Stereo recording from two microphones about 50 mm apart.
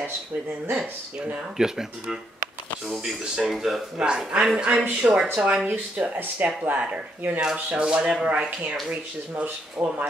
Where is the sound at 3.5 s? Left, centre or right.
Centre.